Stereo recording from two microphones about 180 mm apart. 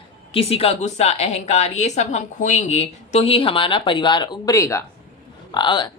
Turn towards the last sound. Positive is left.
turn(degrees=25)  # may be behind; listen again after turning